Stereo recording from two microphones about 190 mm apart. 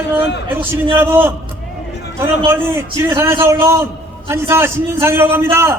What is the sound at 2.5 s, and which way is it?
A man's voice, 15° right (ahead or behind).